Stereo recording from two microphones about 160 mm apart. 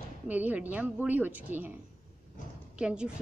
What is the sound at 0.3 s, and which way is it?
A woman's voice, 10° right (ahead or behind).